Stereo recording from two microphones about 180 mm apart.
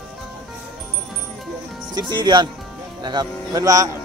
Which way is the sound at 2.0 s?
25° right (ahead or behind).